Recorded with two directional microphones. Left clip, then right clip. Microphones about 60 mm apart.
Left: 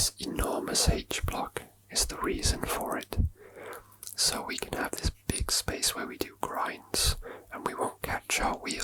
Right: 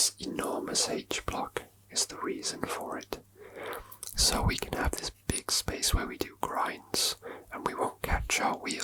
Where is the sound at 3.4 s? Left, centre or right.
Centre.